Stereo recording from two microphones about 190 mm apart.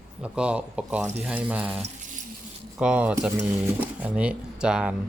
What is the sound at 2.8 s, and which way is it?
Speech, 5° right (ahead or behind).